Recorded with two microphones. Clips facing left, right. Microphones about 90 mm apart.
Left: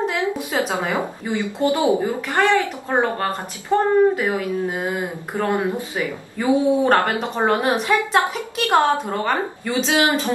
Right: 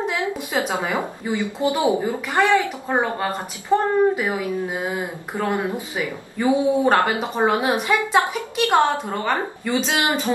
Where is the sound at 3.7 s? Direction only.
15° right (ahead or behind).